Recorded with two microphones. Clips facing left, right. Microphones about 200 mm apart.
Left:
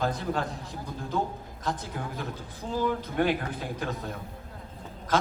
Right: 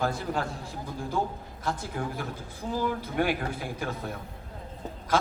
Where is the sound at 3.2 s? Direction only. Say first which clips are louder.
Left 1 dB; 10° right (ahead or behind).